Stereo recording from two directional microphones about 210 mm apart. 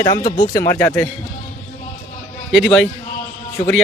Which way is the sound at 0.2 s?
40° left (ahead or behind).